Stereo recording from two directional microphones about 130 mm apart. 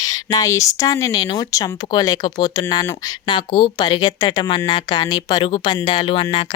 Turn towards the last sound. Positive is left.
turn(degrees=40)  # may be behind; listen again after turning